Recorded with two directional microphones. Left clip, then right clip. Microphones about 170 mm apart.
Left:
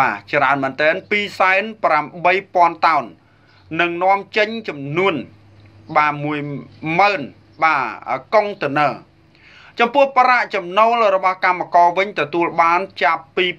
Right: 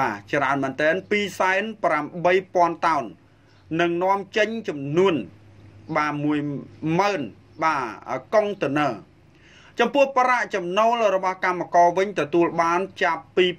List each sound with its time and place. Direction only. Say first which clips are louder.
0.0 s a man's voice: left 7 dB; 50° right (ahead or behind)